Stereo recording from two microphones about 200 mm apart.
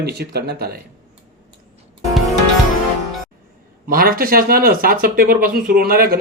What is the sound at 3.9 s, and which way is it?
A man's voice, 45° right (ahead or behind).